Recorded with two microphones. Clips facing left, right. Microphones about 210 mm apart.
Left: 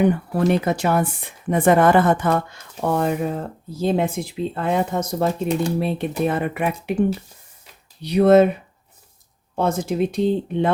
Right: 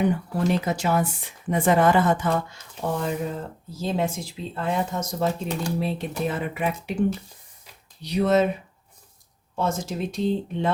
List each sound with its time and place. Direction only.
0.0 s speech: 60° left (ahead or behind)
8.0 s speech: 60° left (ahead or behind)
9.6 s speech: 60° left (ahead or behind)